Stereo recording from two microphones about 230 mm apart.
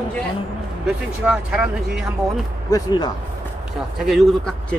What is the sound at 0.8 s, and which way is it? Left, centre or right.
Speech, centre.